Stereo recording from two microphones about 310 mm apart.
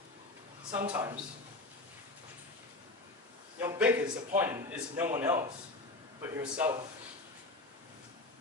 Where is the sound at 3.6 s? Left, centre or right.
Centre.